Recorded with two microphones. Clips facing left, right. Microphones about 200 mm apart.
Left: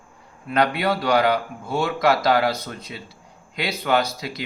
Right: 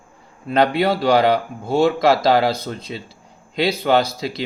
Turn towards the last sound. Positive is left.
turn(degrees=-30)  # may be behind; listen again after turning